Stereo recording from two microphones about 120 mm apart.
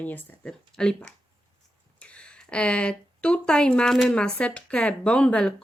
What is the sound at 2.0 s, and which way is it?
Speech, 10° left (ahead or behind).